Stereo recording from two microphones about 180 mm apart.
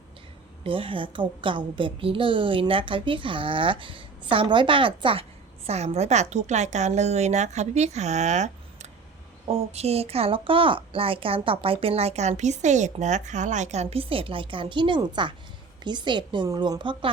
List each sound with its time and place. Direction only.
0.6 s a woman's voice: 30° right (ahead or behind)